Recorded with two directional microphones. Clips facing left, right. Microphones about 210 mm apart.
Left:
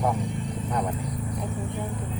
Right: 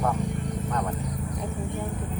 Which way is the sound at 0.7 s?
10° left (ahead or behind).